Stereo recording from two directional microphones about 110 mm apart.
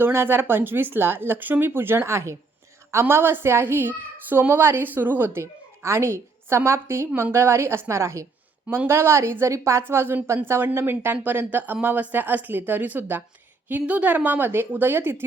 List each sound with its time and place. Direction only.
0.0 s a child's voice: 20° right (ahead or behind)
8.6 s speech: 15° right (ahead or behind)
8.9 s a child's voice: 25° right (ahead or behind)